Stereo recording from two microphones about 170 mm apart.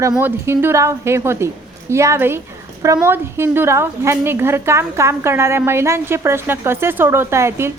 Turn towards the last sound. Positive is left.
turn(degrees=-15)  # may be behind; listen again after turning